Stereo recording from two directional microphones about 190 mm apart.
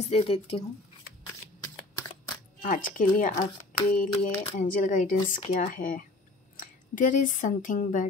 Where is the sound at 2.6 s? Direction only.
45° left (ahead or behind).